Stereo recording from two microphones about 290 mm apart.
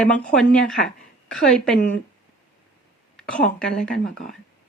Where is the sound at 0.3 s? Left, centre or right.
Centre.